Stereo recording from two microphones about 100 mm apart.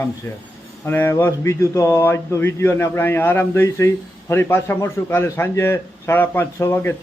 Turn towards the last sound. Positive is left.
turn(degrees=20)  # may be behind; listen again after turning